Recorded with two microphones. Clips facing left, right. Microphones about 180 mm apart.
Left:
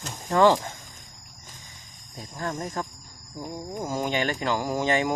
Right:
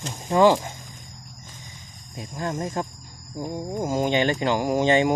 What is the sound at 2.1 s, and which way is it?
Speech, 15° right (ahead or behind).